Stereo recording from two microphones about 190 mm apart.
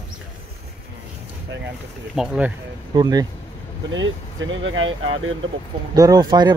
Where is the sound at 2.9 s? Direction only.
20° right (ahead or behind).